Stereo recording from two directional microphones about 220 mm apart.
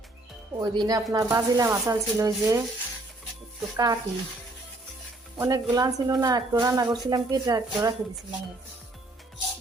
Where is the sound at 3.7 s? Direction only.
15° right (ahead or behind).